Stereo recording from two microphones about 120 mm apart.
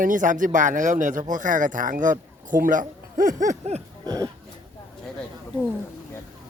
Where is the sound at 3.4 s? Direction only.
75° right (ahead or behind).